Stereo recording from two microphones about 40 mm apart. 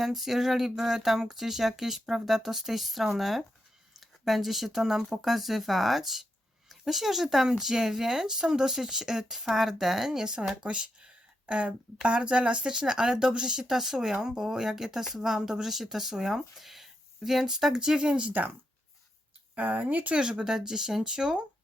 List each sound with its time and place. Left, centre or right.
0.0 s speech: centre; by 12.7 s right
12.7 s speech: centre
19.5 s speech: right
20.1 s speech: centre